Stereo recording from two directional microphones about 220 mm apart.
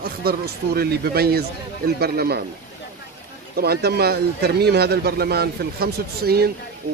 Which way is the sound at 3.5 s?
45° right (ahead or behind).